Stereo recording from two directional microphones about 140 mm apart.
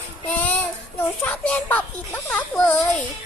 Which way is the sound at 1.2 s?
10° left (ahead or behind).